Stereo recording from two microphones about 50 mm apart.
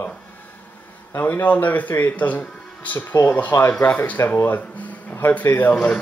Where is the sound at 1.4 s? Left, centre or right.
Left.